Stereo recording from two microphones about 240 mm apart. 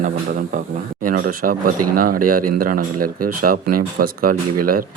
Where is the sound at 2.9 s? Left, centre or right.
Right.